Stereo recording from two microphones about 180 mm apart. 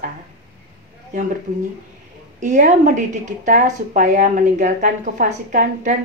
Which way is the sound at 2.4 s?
45° right (ahead or behind).